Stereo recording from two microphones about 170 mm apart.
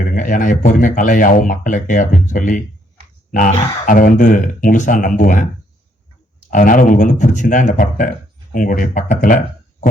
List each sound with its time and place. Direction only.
0.2 s speech: 50° left (ahead or behind)
6.5 s speech: 50° left (ahead or behind)